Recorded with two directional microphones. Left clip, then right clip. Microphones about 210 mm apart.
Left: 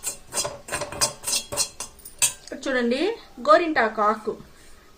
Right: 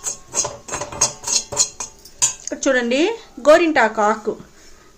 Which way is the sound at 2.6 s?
45° right (ahead or behind).